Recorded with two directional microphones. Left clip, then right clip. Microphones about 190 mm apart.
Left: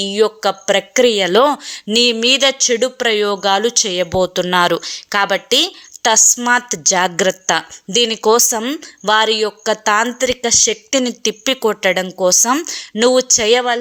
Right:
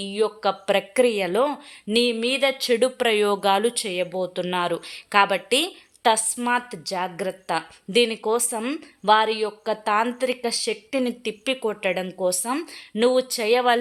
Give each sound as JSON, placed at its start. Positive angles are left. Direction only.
{"t": 0.0, "sound": "speech", "side_deg": 25}
{"t": 1.3, "sound": "speech", "side_deg": 25}